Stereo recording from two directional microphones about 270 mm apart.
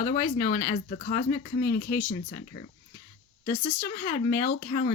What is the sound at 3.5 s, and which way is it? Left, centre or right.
Speech, left.